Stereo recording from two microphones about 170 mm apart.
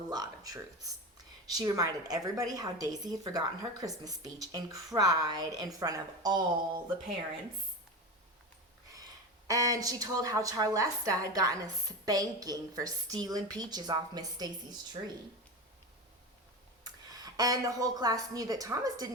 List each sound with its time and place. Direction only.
0.1 s a woman's voice: 20° right (ahead or behind)
9.5 s a woman's voice: 20° right (ahead or behind)
16.8 s speech: 20° right (ahead or behind)